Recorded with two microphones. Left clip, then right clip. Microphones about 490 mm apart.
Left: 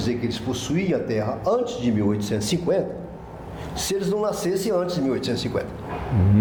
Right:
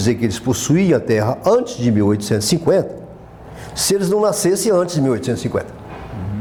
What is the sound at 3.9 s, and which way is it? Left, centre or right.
Speech, right.